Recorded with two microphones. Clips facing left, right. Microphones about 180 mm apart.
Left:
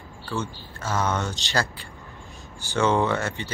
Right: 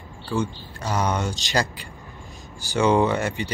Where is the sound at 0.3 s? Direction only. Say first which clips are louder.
Right 5 dB; 15° right (ahead or behind).